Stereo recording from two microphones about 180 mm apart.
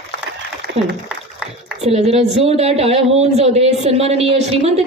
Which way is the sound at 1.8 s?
35° right (ahead or behind).